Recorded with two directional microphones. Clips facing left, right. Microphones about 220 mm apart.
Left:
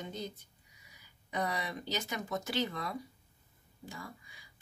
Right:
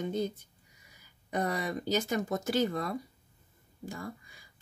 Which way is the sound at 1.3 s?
45° right (ahead or behind).